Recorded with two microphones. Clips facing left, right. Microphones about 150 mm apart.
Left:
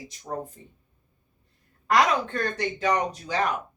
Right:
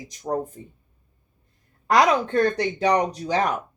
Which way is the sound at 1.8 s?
40° right (ahead or behind).